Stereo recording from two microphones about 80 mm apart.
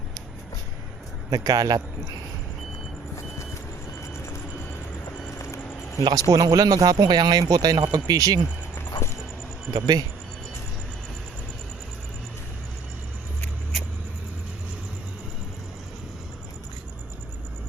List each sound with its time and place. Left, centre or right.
1.3 s speech: right
5.4 s a sound: left
6.0 s speech: right
9.7 s speech: right